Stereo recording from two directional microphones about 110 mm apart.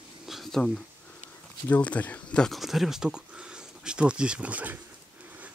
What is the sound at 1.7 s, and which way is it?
Speech, 15° left (ahead or behind).